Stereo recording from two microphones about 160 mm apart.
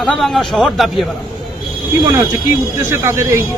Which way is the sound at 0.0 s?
Centre (ahead or behind).